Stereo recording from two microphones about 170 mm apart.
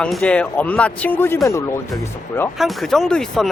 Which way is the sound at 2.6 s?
Centre (ahead or behind).